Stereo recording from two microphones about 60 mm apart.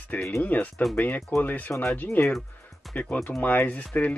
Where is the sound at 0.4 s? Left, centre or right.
Left.